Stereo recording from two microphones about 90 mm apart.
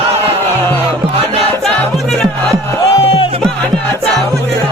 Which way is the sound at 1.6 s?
Centre (ahead or behind).